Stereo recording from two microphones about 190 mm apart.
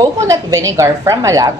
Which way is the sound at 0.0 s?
15° right (ahead or behind).